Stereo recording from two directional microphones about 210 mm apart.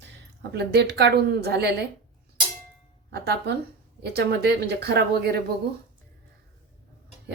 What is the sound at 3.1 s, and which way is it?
A woman's voice, 50° right (ahead or behind).